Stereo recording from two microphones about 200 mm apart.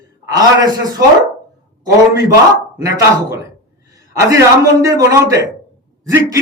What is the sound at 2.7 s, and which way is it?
Speech, 15° right (ahead or behind).